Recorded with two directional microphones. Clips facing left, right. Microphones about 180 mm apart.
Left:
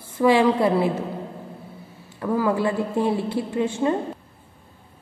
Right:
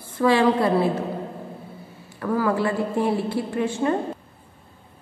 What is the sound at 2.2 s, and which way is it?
A woman's voice, 15° left (ahead or behind).